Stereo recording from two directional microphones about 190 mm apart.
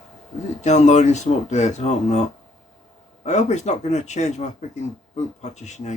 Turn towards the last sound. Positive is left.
turn(degrees=35)  # may be behind; listen again after turning